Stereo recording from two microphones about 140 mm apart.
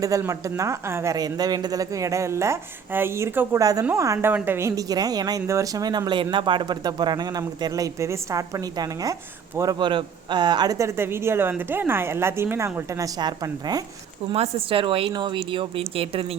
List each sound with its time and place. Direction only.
0.0 s speech: 20° right (ahead or behind)
14.3 s a woman's voice: 45° right (ahead or behind)